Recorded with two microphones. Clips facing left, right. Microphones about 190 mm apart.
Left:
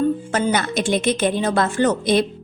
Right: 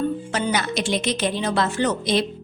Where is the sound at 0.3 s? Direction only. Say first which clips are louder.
Left 3 dB; 50° left (ahead or behind).